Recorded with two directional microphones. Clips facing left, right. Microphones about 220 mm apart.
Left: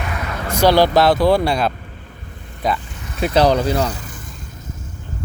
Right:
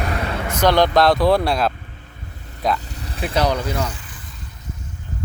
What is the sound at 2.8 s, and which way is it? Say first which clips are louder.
Vehicle: right 1 dB; 35° right (ahead or behind).